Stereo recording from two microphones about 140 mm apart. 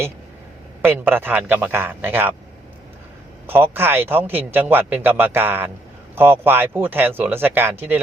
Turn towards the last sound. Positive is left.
turn(degrees=-15)  # may be behind; listen again after turning